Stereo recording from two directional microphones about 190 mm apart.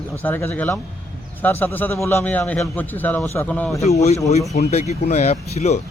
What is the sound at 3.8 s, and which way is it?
Speech, 35° left (ahead or behind).